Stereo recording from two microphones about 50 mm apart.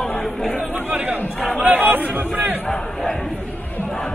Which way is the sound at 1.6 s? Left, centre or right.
Right.